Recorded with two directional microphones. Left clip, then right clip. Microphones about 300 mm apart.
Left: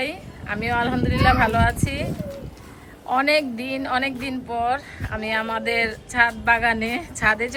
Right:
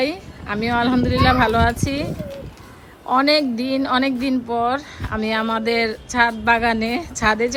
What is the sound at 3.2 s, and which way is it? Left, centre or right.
Speech, centre.